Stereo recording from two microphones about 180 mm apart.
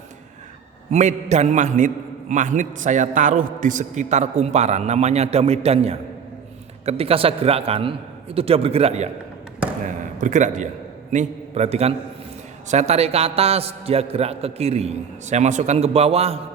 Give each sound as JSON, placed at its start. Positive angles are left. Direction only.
{"t": 0.9, "sound": "a man's voice", "side_deg": -40}
{"t": 10.2, "sound": "a man's voice", "side_deg": -45}